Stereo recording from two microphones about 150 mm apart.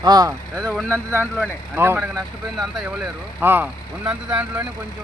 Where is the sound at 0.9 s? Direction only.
15° right (ahead or behind).